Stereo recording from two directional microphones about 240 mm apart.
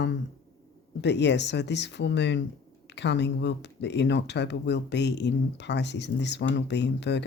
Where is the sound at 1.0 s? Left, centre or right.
Left.